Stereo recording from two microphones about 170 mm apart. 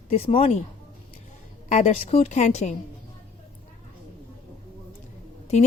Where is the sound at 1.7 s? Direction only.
40° left (ahead or behind).